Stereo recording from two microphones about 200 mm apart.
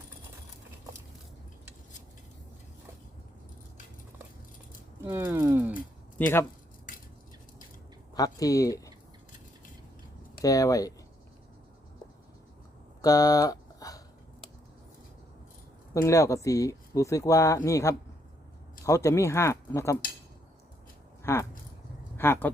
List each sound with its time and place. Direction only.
4.9 s a sound: 10° right (ahead or behind)
6.1 s speech: 10° left (ahead or behind)
8.1 s speech: 20° left (ahead or behind)
10.4 s speech: 15° left (ahead or behind)
13.0 s a sound: 15° left (ahead or behind)
16.0 s speech: 15° left (ahead or behind)
21.3 s speech: 15° left (ahead or behind)